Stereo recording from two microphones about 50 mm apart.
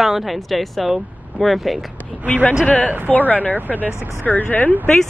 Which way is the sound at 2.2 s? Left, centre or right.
Left.